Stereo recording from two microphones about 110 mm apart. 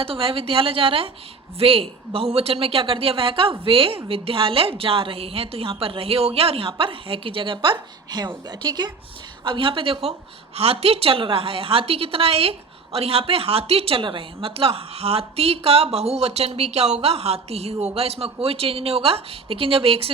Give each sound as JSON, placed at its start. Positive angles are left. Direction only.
{"t": 0.0, "sound": "a woman's voice", "side_deg": -55}